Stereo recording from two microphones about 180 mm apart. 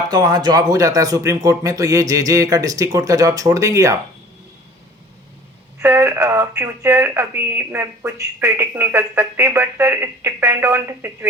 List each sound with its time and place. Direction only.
0.1 s speech: 25° right (ahead or behind)
5.8 s speech: 15° right (ahead or behind)